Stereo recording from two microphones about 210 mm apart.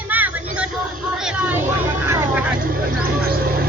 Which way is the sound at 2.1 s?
10° right (ahead or behind).